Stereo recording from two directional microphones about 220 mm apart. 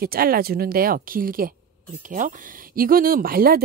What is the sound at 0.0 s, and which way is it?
Speech, 40° right (ahead or behind).